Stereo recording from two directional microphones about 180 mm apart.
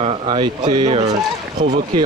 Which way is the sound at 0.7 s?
40° right (ahead or behind).